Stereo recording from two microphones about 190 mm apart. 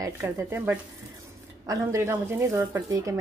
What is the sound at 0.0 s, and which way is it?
Speech, 15° right (ahead or behind).